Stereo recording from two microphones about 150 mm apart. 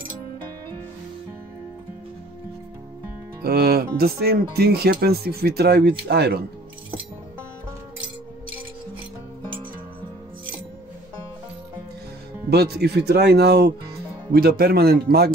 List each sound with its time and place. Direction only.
3.4 s speech: 90° right
12.4 s speech: 90° right